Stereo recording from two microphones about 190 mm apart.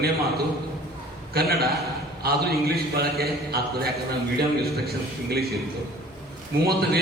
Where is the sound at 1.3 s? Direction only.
55° right (ahead or behind).